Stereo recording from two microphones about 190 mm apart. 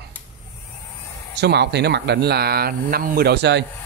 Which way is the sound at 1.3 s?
60° right (ahead or behind).